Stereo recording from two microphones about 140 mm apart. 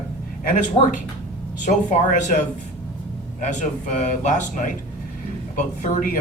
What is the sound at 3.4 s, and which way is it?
A man's voice, 65° left (ahead or behind).